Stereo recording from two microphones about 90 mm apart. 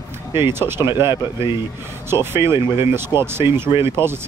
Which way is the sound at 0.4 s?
25° right (ahead or behind).